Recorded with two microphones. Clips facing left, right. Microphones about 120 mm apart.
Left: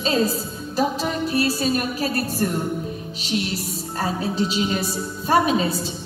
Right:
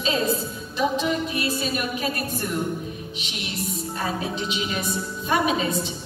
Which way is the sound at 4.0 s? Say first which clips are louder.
Left 6 dB; 35° left (ahead or behind).